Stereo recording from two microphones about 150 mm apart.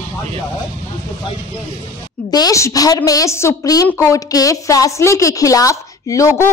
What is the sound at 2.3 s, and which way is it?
A woman's voice, 25° left (ahead or behind).